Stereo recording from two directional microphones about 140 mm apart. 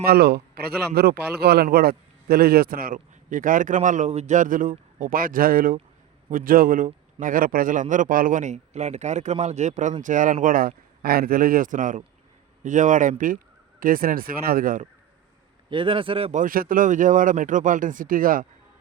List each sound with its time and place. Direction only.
0.0 s a man's voice: 90° right; by 4.7 s 75° right (ahead or behind)
4.9 s a man's voice: 90° right; by 10.3 s 65° right (ahead or behind)
10.4 s speech: 90° right
15.7 s speech: 40° right (ahead or behind)
16.3 s a man's voice: 80° right